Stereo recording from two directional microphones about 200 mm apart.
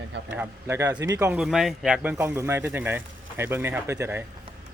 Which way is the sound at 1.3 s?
Centre (ahead or behind).